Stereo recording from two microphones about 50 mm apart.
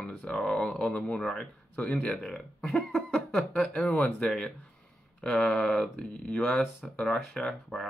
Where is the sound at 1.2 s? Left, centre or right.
Centre.